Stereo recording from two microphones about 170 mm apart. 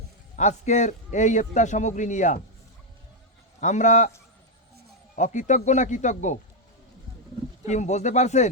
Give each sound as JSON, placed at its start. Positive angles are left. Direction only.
{"t": 0.3, "sound": "a man's voice", "side_deg": 45}
{"t": 3.6, "sound": "a man's voice", "side_deg": 45}
{"t": 5.1, "sound": "a man's voice", "side_deg": 45}
{"t": 7.7, "sound": "a man's voice", "side_deg": 40}